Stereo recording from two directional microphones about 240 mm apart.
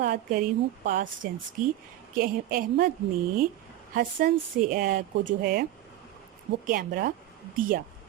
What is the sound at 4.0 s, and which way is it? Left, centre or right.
A woman's voice, right.